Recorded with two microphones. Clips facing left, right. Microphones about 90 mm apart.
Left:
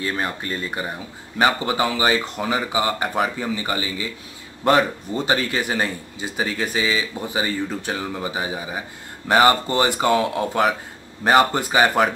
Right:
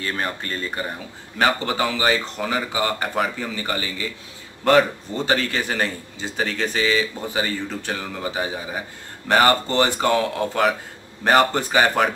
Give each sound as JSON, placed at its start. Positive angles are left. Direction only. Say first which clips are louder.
{"t": 0.0, "sound": "speech", "louder": "left 1 dB", "side_deg": 15}